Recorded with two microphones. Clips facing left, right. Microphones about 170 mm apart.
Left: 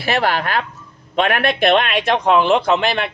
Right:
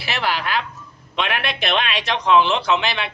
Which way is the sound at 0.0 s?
50° left (ahead or behind).